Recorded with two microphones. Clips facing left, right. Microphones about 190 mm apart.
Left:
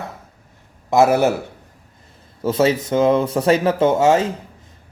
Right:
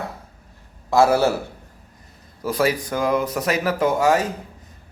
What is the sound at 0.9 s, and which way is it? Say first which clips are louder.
Speech: left 2 dB; 20° left (ahead or behind).